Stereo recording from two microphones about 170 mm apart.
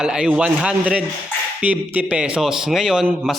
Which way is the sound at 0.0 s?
5° right (ahead or behind).